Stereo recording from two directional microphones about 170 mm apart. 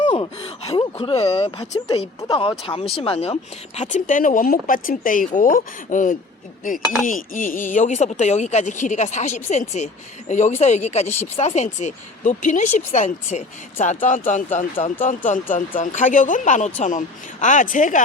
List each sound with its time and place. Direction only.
0.0 s gasp: 35° left (ahead or behind)
0.9 s speech: 35° left (ahead or behind)
2.2 s speech: 25° left (ahead or behind)
3.8 s speech: 45° left (ahead or behind)